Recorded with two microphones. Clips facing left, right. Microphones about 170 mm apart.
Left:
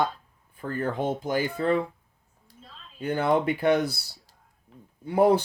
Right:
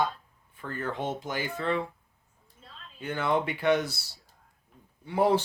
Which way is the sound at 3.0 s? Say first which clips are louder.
Left 5 dB; 40° left (ahead or behind).